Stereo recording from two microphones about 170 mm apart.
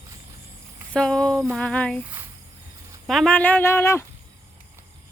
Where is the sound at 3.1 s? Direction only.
5° left (ahead or behind).